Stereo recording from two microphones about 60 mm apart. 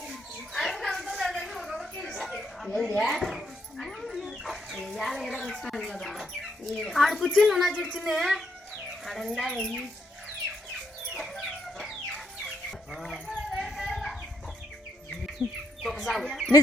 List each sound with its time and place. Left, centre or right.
0.1 s a sound: centre
3.0 s dog: centre
4.3 s speech: centre
11.1 s chicken: centre
13.3 s dog: centre
13.7 s chicken: centre
15.1 s bird: centre